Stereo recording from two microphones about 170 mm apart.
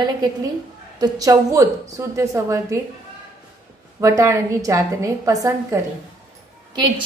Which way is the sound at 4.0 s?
15° right (ahead or behind).